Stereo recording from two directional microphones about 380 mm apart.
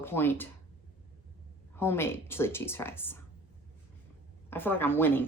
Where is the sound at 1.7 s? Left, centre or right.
Centre.